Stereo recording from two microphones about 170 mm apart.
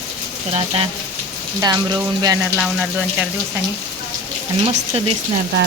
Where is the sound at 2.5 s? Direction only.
5° right (ahead or behind).